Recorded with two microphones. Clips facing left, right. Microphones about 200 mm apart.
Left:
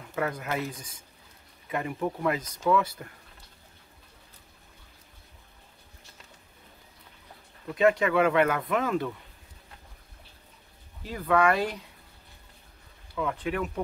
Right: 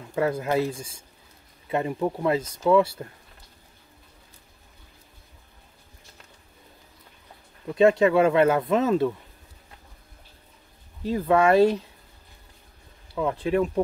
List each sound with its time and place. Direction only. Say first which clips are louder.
0.1 s speech: right 7 dB; 30° right (ahead or behind)
7.7 s speech: right 5 dB; 25° right (ahead or behind)
11.0 s speech: right 4 dB; 25° right (ahead or behind)
13.1 s speech: right 6 dB; 25° right (ahead or behind)